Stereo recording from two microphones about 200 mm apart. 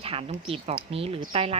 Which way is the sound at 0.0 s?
30° right (ahead or behind).